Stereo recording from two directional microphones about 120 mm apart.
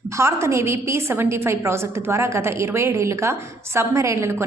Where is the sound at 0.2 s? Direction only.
20° right (ahead or behind).